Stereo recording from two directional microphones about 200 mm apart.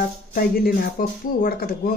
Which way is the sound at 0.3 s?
45° left (ahead or behind).